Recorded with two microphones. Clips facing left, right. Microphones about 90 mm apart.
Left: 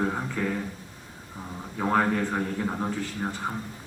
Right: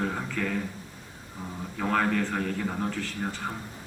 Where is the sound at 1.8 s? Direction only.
25° left (ahead or behind).